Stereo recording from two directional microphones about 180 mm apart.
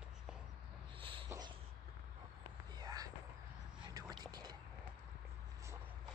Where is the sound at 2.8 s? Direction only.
20° right (ahead or behind).